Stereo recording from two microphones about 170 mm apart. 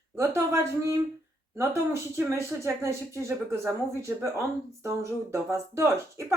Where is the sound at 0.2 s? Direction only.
15° right (ahead or behind).